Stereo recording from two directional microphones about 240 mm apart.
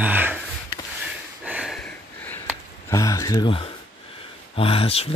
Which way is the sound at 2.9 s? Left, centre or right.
Centre.